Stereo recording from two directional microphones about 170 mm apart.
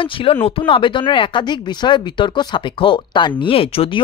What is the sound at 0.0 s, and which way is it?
Speech, 30° left (ahead or behind).